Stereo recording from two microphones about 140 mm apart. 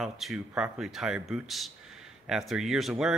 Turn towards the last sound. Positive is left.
turn(degrees=0)  # may be behind; listen again after turning